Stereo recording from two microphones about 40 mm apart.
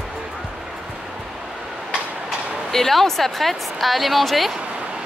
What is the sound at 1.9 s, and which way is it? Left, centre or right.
Train, right.